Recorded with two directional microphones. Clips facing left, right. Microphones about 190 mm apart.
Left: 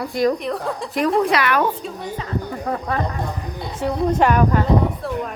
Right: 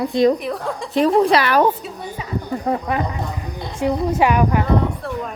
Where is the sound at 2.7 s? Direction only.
25° right (ahead or behind).